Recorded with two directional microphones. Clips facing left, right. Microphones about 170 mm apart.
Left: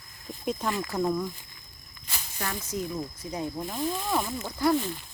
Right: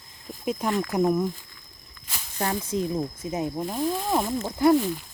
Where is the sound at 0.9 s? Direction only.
20° right (ahead or behind).